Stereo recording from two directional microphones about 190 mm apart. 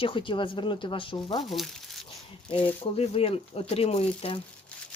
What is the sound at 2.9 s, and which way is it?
Speech, 30° left (ahead or behind).